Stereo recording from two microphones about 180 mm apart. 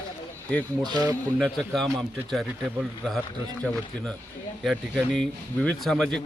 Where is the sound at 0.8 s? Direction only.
20° right (ahead or behind).